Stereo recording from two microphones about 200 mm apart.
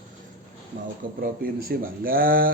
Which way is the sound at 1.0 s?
45° right (ahead or behind).